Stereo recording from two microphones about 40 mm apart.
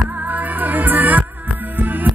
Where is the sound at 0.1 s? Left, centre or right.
Right.